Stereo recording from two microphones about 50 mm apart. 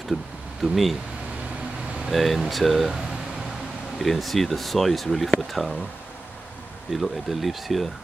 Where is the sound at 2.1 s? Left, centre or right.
Centre.